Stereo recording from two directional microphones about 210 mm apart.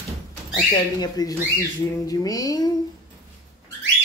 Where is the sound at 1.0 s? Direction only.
20° left (ahead or behind).